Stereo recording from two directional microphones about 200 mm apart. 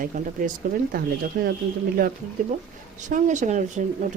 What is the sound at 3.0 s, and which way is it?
Speech, 40° right (ahead or behind).